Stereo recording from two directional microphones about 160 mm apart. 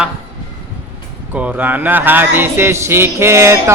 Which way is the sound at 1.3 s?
10° right (ahead or behind).